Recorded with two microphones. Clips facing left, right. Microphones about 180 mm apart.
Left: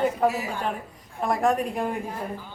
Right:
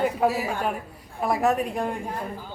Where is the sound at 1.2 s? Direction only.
5° right (ahead or behind).